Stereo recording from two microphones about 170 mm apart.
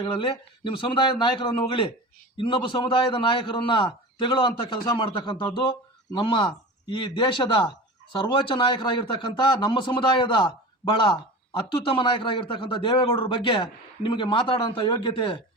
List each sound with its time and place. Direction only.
0.0 s a man's voice: 30° left (ahead or behind)